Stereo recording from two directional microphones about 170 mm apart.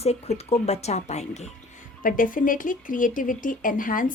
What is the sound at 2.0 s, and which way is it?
Speech, 55° left (ahead or behind).